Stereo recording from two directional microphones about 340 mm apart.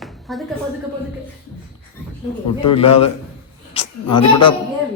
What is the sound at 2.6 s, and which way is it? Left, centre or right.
A woman's voice, centre.